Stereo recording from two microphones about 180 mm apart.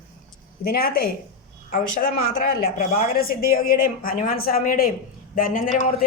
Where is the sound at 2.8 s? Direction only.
50° left (ahead or behind).